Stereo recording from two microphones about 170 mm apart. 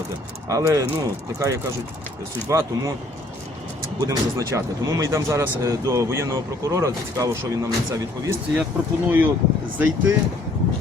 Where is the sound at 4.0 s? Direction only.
20° right (ahead or behind).